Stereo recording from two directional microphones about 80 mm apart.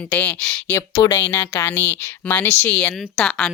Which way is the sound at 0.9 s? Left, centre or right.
Left.